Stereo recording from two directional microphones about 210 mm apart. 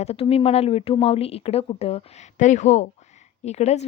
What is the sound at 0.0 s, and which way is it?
A woman's voice, 30° left (ahead or behind).